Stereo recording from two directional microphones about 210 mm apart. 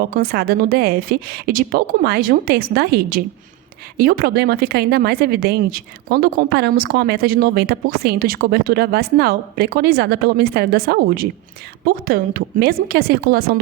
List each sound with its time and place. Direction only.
0.0 s speech: 45° right (ahead or behind)